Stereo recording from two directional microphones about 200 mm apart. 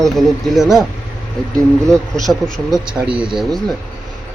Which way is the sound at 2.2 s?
Centre (ahead or behind).